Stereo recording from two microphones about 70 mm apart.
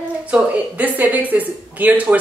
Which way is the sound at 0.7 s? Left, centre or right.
Right.